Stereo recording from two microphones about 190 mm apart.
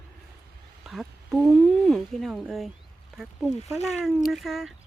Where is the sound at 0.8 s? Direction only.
Centre (ahead or behind).